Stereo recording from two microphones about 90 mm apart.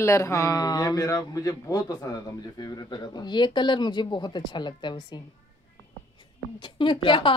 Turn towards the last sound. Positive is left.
turn(degrees=65)  # may be behind; listen again after turning